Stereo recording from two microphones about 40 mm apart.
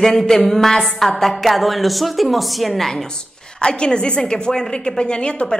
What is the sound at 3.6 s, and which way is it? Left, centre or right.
A woman's voice, left.